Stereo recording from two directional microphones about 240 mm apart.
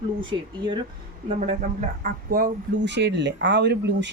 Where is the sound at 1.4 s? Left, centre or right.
Right.